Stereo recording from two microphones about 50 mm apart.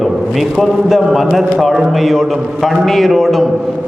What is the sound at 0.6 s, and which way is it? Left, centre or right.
A man's voice, centre.